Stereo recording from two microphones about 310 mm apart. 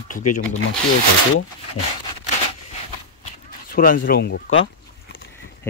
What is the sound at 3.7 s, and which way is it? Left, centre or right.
Speech, left.